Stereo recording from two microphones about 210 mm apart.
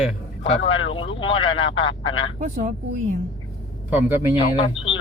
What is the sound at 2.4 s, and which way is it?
Speech, 40° right (ahead or behind).